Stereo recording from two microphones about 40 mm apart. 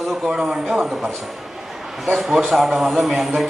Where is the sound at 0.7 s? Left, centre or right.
Centre.